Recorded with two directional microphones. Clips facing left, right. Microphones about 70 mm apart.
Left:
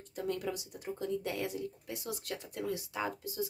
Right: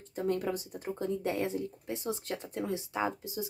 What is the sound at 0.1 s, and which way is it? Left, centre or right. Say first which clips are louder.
Speech: right 5 dB; right.